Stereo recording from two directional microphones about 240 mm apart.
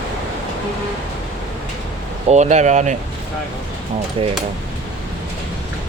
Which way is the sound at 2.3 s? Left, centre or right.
Right.